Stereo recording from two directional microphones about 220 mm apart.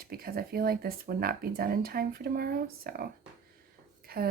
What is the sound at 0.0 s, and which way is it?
Speech, 45° right (ahead or behind).